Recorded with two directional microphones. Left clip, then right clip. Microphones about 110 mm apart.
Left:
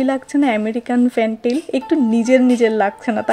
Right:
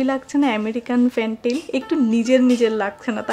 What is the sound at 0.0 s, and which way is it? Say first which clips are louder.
Speech: left 3 dB; 25° left (ahead or behind).